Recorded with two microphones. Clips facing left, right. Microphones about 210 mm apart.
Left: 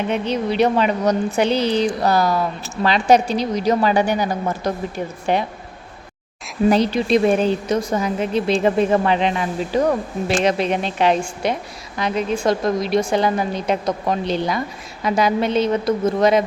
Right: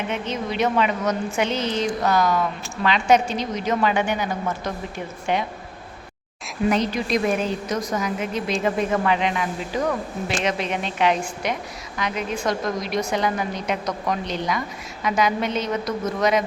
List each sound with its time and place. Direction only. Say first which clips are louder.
0.1 s a woman's voice: left 6 dB; 35° left (ahead or behind)
6.7 s a woman's voice: left 6 dB; 30° left (ahead or behind)